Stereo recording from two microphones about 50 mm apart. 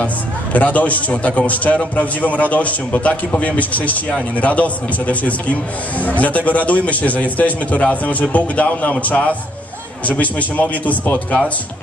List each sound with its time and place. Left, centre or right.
0.0 s a man's voice: left
10.5 s a man's voice: left